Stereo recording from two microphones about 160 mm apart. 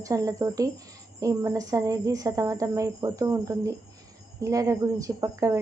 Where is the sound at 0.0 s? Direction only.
20° right (ahead or behind).